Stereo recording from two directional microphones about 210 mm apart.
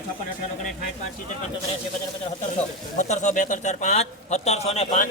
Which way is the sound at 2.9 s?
35° left (ahead or behind).